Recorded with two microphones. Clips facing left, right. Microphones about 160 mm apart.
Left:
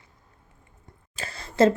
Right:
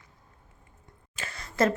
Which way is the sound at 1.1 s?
30° left (ahead or behind).